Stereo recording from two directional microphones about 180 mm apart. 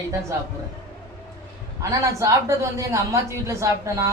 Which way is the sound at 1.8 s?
15° right (ahead or behind).